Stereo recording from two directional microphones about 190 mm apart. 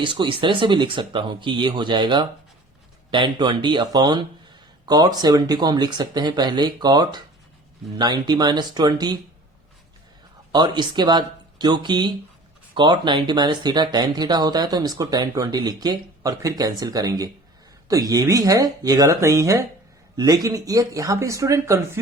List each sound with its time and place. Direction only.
0.0 s speech: 25° right (ahead or behind)
10.5 s speech: 25° right (ahead or behind)